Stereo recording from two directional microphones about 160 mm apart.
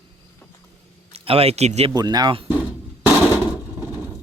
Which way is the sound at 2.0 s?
25° right (ahead or behind).